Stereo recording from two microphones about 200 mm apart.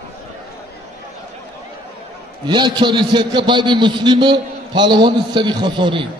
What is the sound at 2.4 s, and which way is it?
A man's voice, 20° right (ahead or behind).